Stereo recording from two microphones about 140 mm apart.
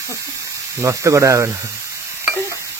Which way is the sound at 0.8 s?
20° right (ahead or behind).